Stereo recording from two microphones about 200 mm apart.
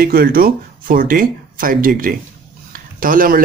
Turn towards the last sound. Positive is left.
turn(degrees=-45)  # may be behind; listen again after turning